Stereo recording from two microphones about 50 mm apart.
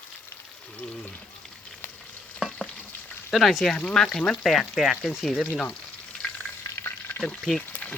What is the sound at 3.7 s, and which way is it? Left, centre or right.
Speech, left.